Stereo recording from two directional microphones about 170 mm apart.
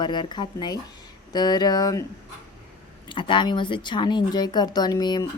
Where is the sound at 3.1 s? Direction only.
30° left (ahead or behind).